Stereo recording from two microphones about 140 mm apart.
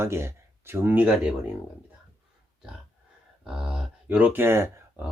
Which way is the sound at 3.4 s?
5° right (ahead or behind).